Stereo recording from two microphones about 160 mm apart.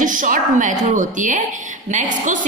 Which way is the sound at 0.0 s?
55° right (ahead or behind).